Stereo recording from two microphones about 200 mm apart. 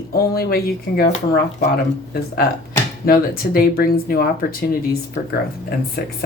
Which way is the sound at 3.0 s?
50° left (ahead or behind).